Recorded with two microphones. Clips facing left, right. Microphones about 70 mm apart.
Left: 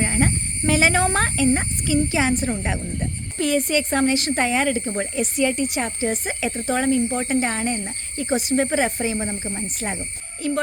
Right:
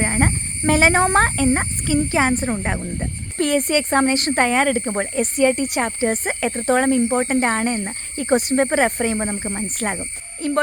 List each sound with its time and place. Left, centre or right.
0.0 s speech: right